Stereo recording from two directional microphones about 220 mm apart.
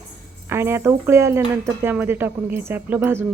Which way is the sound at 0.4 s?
10° right (ahead or behind).